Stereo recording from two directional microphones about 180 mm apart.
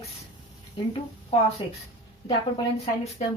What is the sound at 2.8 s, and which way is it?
Speech, 35° left (ahead or behind).